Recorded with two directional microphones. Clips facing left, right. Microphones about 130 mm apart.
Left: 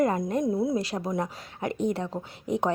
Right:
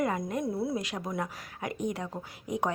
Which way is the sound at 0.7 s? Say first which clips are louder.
Left 5 dB; 30° left (ahead or behind).